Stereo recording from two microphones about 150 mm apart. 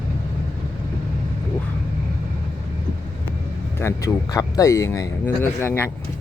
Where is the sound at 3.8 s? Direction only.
20° left (ahead or behind).